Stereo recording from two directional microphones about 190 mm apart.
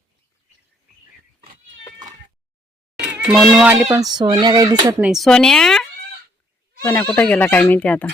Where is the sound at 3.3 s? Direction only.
5° right (ahead or behind).